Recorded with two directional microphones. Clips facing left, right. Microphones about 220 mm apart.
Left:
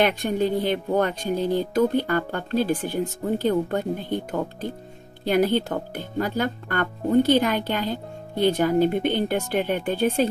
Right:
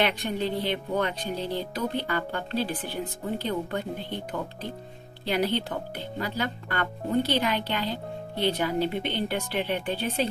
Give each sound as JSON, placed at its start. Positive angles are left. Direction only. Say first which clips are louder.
{"t": 0.0, "sound": "speech", "louder": "left 5 dB", "side_deg": 45}